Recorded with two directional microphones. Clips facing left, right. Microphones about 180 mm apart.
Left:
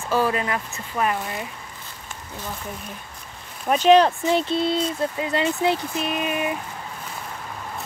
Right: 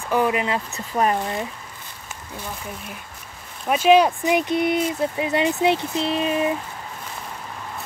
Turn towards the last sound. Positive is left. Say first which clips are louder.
# right 3 dB
turn(degrees=-30)  # may be behind; listen again after turning